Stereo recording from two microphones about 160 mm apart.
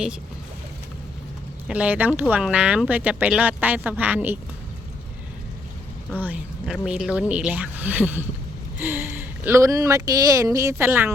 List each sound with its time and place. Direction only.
1.6 s speech: 10° right (ahead or behind)
6.1 s speech: 10° right (ahead or behind)